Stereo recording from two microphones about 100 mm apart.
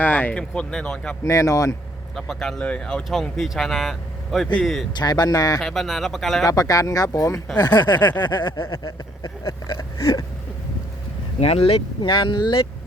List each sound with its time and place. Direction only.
0.0 s speech: 15° left (ahead or behind)
1.2 s speech: 30° left (ahead or behind)
2.1 s speech: 5° left (ahead or behind)
4.9 s speech: 45° left (ahead or behind)
5.5 s speech: centre (ahead or behind)
6.4 s speech: 35° left (ahead or behind)
8.7 s a sound: 45° left (ahead or behind)
11.3 s speech: 80° left
12.0 s speech: 55° left (ahead or behind)